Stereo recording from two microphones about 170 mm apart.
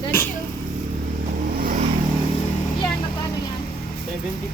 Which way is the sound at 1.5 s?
60° right (ahead or behind).